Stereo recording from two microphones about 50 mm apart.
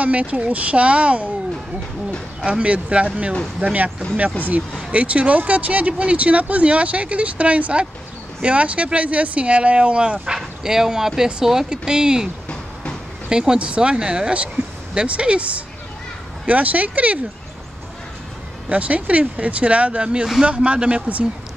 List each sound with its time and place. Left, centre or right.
0.0 s speech: right
2.4 s speech: right
4.9 s speech: right
13.3 s speech: centre
18.7 s speech: right